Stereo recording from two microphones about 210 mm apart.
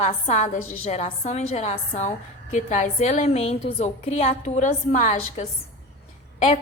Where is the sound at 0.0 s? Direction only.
35° left (ahead or behind).